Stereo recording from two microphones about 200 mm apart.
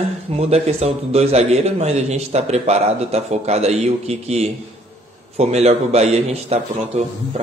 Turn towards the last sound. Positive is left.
turn(degrees=-35)  # may be behind; listen again after turning